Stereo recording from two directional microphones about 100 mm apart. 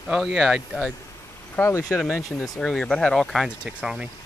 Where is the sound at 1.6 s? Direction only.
25° left (ahead or behind).